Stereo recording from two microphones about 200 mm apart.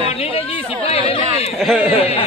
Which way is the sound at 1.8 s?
30° left (ahead or behind).